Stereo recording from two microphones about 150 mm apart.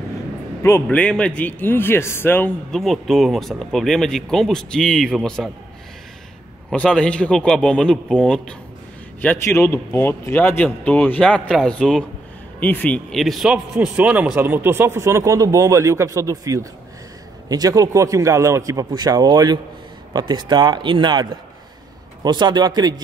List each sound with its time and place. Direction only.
0.6 s a man's voice: 20° left (ahead or behind)
0.8 s speech: 5° left (ahead or behind)
2.7 s speech: centre (ahead or behind)
6.7 s speech: 5° left (ahead or behind); by 22.9 s 30° right (ahead or behind)